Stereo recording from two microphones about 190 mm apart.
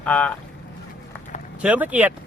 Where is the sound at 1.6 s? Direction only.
5° right (ahead or behind).